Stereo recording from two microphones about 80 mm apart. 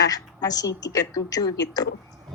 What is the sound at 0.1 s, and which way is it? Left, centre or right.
A woman's voice, left.